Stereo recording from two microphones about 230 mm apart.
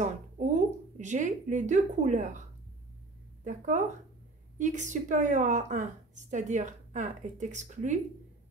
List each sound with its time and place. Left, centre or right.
0.0 s speech: right
3.4 s a woman's voice: right